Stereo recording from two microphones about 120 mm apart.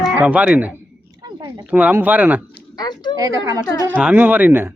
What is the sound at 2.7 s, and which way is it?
Speech, 35° left (ahead or behind).